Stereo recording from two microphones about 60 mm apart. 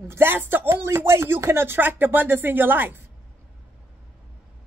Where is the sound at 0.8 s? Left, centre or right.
Right.